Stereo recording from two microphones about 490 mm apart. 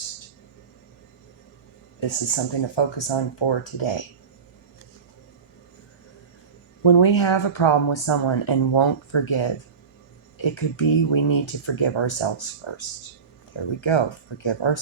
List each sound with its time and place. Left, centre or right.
2.0 s speech: left
6.8 s speech: left